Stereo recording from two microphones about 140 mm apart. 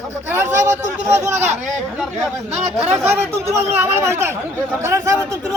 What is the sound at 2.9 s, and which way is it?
A man's voice, 15° right (ahead or behind).